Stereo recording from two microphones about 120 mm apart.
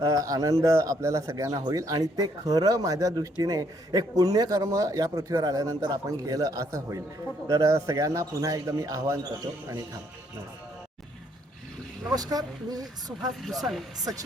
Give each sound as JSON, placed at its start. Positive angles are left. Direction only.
{"t": 0.0, "sound": "speech", "side_deg": -30}
{"t": 12.1, "sound": "speech", "side_deg": -30}
{"t": 13.4, "sound": "speech", "side_deg": 0}